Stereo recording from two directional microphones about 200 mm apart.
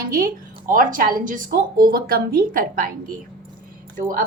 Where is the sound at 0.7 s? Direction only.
45° right (ahead or behind).